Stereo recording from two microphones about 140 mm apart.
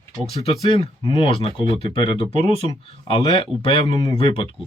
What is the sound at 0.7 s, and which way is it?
Speech, 40° left (ahead or behind).